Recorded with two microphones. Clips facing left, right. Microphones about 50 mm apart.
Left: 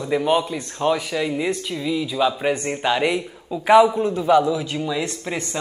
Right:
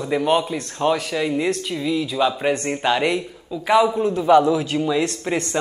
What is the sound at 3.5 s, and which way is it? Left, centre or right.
Speech, centre.